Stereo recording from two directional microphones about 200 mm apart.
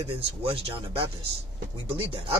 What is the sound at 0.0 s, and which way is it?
Speech, 25° right (ahead or behind).